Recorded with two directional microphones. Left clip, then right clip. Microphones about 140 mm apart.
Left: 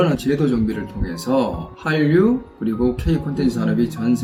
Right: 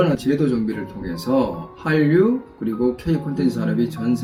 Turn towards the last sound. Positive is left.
turn(degrees=25)  # may be behind; listen again after turning